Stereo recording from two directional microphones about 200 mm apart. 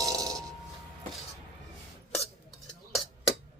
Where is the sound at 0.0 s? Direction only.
20° right (ahead or behind).